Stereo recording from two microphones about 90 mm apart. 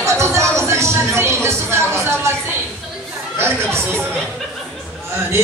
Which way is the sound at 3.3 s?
25° right (ahead or behind).